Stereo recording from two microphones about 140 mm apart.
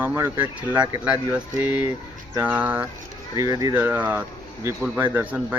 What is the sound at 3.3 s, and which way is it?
Speech, 25° right (ahead or behind).